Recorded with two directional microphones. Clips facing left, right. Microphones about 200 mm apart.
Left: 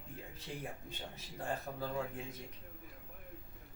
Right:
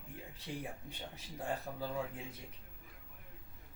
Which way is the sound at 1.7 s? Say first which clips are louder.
Even; centre (ahead or behind).